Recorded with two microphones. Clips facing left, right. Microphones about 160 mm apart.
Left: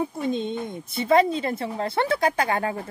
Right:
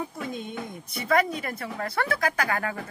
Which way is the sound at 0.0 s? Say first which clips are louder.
Left 7 dB; 25° left (ahead or behind).